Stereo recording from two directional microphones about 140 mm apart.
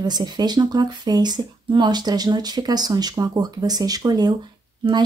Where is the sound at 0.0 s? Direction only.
30° right (ahead or behind).